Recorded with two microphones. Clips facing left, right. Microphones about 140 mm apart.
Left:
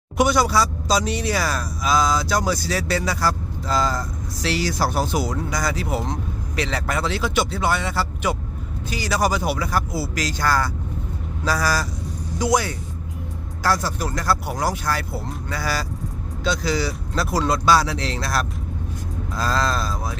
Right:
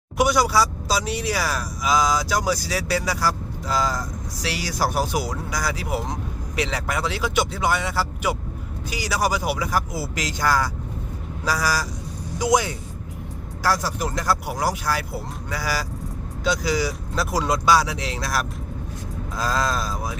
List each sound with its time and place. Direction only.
0.2 s a man's voice: 10° right (ahead or behind)